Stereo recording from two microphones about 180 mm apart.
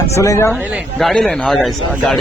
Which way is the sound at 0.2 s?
15° left (ahead or behind).